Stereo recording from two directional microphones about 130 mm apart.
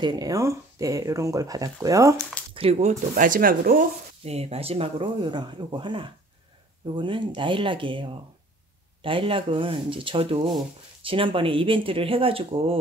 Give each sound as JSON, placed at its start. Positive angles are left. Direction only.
{"t": 0.0, "sound": "speech", "side_deg": -30}
{"t": 2.5, "sound": "speech", "side_deg": -50}
{"t": 4.2, "sound": "speech", "side_deg": -50}